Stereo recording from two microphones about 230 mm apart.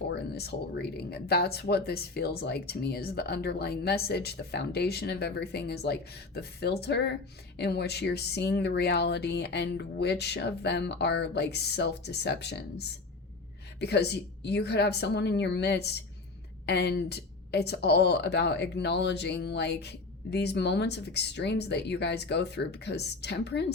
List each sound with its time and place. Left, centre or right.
0.1 s speech: left